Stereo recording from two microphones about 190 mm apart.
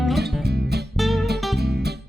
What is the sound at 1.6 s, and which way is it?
Music, 60° right (ahead or behind).